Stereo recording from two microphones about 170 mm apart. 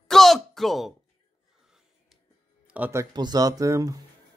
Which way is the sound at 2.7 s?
15° right (ahead or behind).